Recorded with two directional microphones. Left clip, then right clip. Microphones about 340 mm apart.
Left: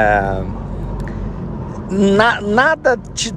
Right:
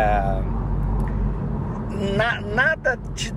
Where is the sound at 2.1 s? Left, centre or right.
Left.